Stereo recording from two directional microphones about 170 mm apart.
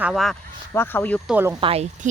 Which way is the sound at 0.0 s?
Centre (ahead or behind).